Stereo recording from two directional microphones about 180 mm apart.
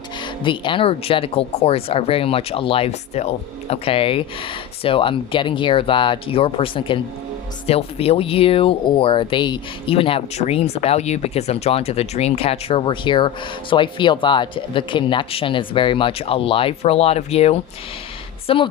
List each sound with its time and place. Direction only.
0.4 s speech: 25° left (ahead or behind)